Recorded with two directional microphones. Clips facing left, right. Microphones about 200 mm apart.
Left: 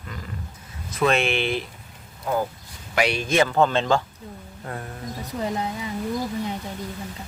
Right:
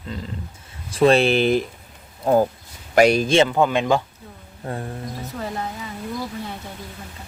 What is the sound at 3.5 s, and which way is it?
Speech, 15° right (ahead or behind).